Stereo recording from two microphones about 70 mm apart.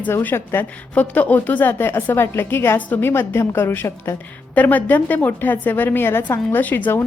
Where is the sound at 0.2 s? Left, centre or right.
Left.